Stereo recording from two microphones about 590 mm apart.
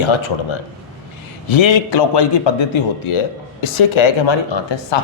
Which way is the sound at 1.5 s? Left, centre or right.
Left.